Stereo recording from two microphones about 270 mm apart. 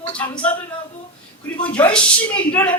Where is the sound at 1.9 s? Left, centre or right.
Centre.